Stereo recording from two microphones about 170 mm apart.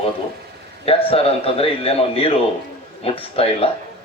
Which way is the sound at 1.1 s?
35° left (ahead or behind).